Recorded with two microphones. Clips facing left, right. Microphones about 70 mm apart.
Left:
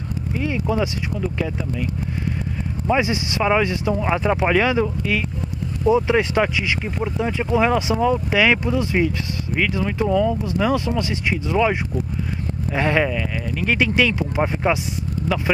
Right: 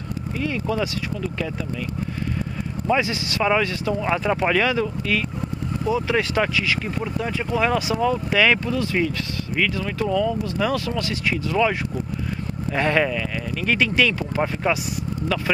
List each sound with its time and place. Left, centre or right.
0.4 s speech: centre
2.9 s speech: left
12.7 s speech: centre